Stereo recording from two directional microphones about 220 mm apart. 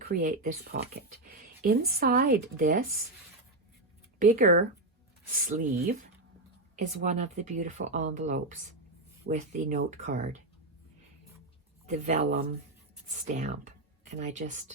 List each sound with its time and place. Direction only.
0.1 s speech: 40° right (ahead or behind)
4.2 s speech: 35° right (ahead or behind)
11.9 s speech: 35° right (ahead or behind)